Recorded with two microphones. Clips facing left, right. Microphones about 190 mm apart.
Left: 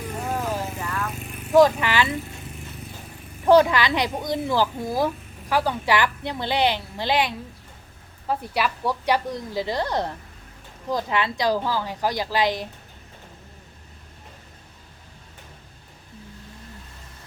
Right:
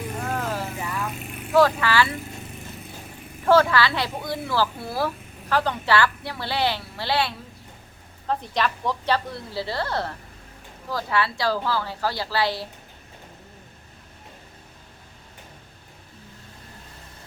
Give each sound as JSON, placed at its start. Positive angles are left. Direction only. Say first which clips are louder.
{"t": 0.3, "sound": "vehicle", "louder": "left 2 dB", "side_deg": 15}
{"t": 0.8, "sound": "vehicle", "louder": "even", "side_deg": -10}
{"t": 1.5, "sound": "speech", "louder": "left 2 dB", "side_deg": 15}
{"t": 3.4, "sound": "a woman's voice", "louder": "left 2 dB", "side_deg": 20}